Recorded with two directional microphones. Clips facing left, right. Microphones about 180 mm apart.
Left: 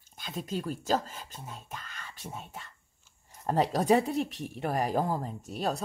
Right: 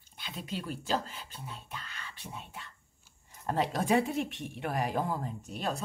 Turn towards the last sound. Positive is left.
turn(degrees=40)  # may be behind; listen again after turning